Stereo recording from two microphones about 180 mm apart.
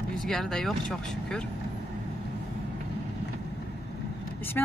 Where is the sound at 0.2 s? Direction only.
Centre (ahead or behind).